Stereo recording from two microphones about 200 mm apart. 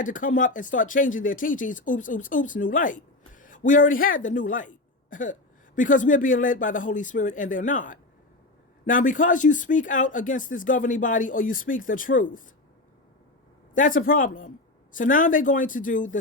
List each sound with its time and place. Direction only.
0.0 s speech: 40° left (ahead or behind)
13.7 s speech: 40° left (ahead or behind)